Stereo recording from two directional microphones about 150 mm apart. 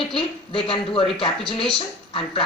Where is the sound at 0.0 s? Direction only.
35° left (ahead or behind).